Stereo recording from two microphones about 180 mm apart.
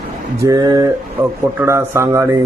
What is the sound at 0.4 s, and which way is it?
A man's voice, 20° right (ahead or behind).